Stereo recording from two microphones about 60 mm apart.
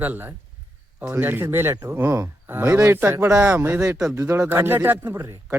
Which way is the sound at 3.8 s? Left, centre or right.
Right.